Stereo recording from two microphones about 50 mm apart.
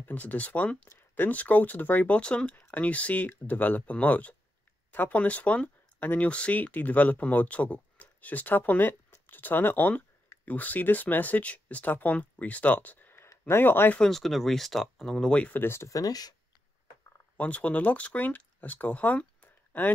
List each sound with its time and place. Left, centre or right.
0.0 s speech: left
1.1 s speech: left
13.6 s speech: left
14.1 s speech: centre
15.3 s speech: left
15.6 s speech: left
17.4 s speech: left